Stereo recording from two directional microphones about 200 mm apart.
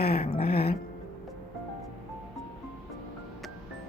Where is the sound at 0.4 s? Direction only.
50° left (ahead or behind).